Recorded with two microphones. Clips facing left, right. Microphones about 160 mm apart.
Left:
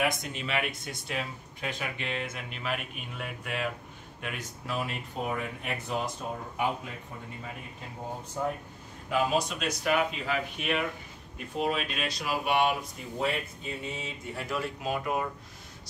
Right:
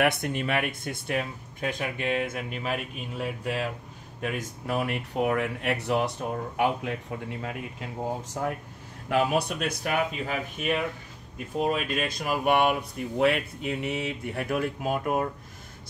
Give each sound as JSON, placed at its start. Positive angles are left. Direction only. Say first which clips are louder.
{"t": 0.0, "sound": "speech", "louder": "right 5 dB", "side_deg": -65}
{"t": 4.2, "sound": "speech", "louder": "right 7 dB", "side_deg": -50}
{"t": 9.1, "sound": "speech", "louder": "right 3 dB", "side_deg": -60}
{"t": 13.2, "sound": "speech", "louder": "right 7 dB", "side_deg": -70}